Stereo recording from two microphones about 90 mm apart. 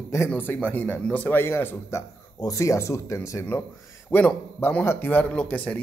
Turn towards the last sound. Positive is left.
turn(degrees=15)  # may be behind; listen again after turning